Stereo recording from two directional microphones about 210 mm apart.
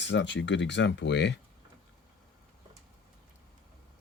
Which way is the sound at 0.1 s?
55° left (ahead or behind).